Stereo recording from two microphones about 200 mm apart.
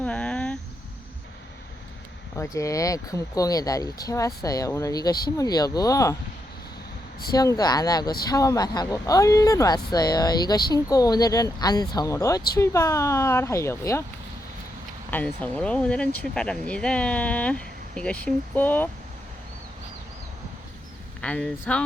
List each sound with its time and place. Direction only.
0.0 s a sound: 5° left (ahead or behind)
2.4 s speech: 15° left (ahead or behind)
7.3 s speech: 20° left (ahead or behind)
15.1 s speech: 5° left (ahead or behind)
21.2 s speech: 5° left (ahead or behind)